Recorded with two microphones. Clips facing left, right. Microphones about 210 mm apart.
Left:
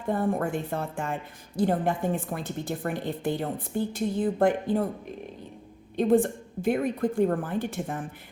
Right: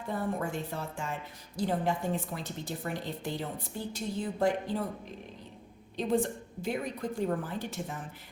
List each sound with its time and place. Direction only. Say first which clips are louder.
0.1 s a woman's voice: left 7 dB; 55° left (ahead or behind)
6.0 s a woman's voice: left 7 dB; 55° left (ahead or behind)